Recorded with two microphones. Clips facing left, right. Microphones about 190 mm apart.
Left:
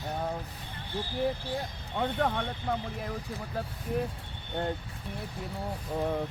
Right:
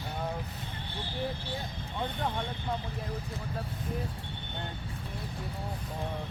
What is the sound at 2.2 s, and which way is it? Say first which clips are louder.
Speech: left 6 dB; 70° left (ahead or behind).